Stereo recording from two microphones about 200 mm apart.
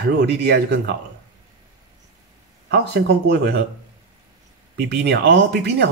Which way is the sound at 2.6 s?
55° right (ahead or behind).